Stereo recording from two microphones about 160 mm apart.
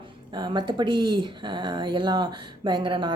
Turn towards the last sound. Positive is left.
turn(degrees=-30)  # may be behind; listen again after turning